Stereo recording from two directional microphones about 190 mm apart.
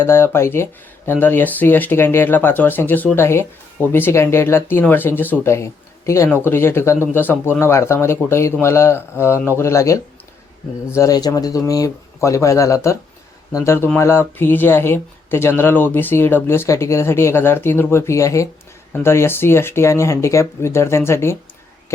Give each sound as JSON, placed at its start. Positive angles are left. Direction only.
{"t": 0.0, "sound": "speech", "side_deg": 10}